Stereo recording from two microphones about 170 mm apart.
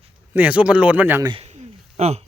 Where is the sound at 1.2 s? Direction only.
25° right (ahead or behind).